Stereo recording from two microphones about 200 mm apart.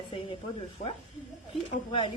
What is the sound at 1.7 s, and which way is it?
Speech, 25° left (ahead or behind).